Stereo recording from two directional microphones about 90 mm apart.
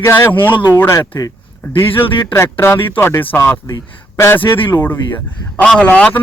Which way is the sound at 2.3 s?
30° left (ahead or behind).